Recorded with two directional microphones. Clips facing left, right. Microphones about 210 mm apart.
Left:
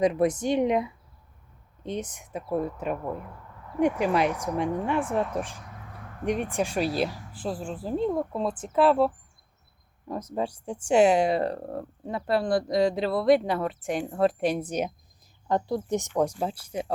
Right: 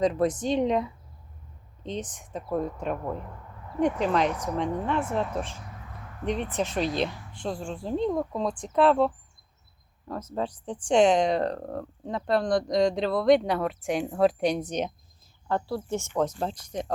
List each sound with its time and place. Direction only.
0.0 s speech: 10° left (ahead or behind)
7.1 s a sound: 40° left (ahead or behind)
7.3 s speech: 5° left (ahead or behind)